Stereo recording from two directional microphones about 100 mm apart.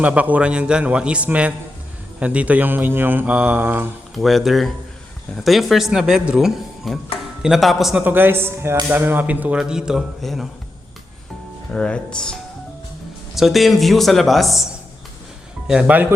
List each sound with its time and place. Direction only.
0.0 s speech: 15° right (ahead or behind)
4.1 s speech: centre (ahead or behind)
8.0 s speech: 20° right (ahead or behind); by 10.5 s centre (ahead or behind)
11.7 s speech: 10° left (ahead or behind); by 16.1 s 15° right (ahead or behind)